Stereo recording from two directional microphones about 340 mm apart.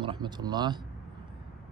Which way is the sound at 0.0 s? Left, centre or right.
Centre.